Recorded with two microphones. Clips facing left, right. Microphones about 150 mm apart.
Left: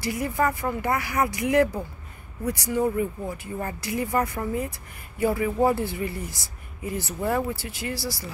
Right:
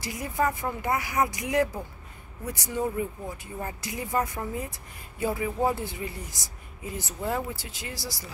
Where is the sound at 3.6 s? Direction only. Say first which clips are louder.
Left 6 dB; 15° right (ahead or behind).